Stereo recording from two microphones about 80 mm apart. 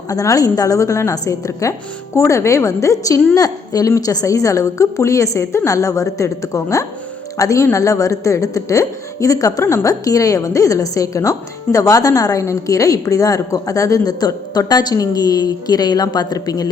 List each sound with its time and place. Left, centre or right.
0.1 s a woman's voice: left